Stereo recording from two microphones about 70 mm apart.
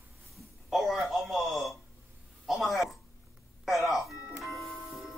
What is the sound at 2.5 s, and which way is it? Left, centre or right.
Speech, centre.